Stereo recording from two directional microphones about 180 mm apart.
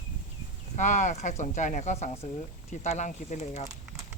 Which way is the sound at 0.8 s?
45° left (ahead or behind).